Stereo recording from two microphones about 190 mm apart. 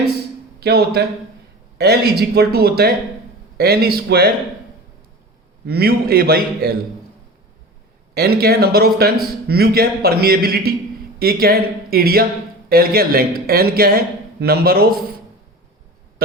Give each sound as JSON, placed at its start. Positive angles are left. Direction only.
{"t": 0.6, "sound": "a man's voice", "side_deg": -55}
{"t": 5.6, "sound": "a man's voice", "side_deg": -55}
{"t": 8.1, "sound": "a man's voice", "side_deg": -55}